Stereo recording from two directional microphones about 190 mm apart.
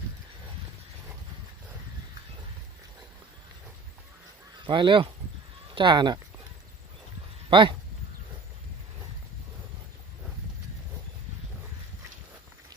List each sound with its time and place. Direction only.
4.6 s speech: 25° right (ahead or behind)
7.5 s speech: 25° right (ahead or behind)